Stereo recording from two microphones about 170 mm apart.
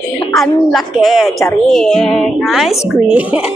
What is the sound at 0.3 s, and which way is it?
A woman's voice, centre (ahead or behind).